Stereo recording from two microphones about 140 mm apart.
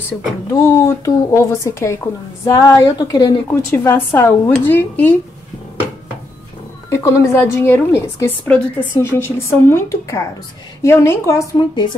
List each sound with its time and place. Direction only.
0.5 s a woman's voice: 20° left (ahead or behind)
3.4 s a woman's voice: 15° left (ahead or behind)
6.9 s a woman's voice: 20° left (ahead or behind)